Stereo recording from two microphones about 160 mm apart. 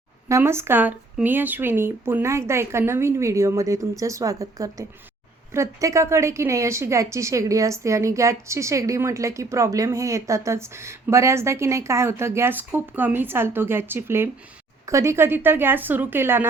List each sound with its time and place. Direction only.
0.3 s a woman's voice: 15° right (ahead or behind)